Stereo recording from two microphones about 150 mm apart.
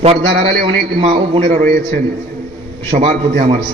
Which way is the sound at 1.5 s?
60° right (ahead or behind).